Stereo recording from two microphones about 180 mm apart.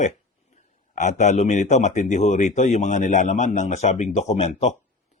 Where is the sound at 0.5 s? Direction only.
40° left (ahead or behind).